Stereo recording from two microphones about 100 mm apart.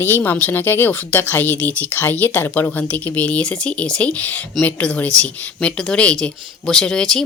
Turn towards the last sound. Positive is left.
turn(degrees=5)  # may be behind; listen again after turning